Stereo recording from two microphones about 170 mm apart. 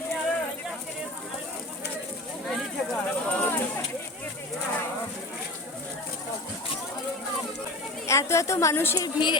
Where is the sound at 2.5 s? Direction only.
5° left (ahead or behind).